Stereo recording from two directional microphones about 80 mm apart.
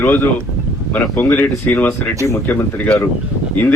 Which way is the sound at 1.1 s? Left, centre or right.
Left.